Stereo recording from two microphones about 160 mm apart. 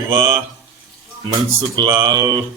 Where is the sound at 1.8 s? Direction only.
20° right (ahead or behind).